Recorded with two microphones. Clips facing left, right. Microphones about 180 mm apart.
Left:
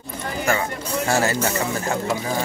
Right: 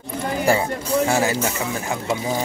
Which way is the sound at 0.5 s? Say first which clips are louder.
Right 4 dB; 30° right (ahead or behind).